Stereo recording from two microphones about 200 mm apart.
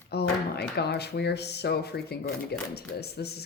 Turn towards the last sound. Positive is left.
turn(degrees=55)  # may be behind; listen again after turning